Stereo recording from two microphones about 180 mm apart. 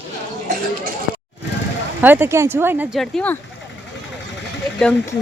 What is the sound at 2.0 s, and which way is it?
Speech, 10° right (ahead or behind).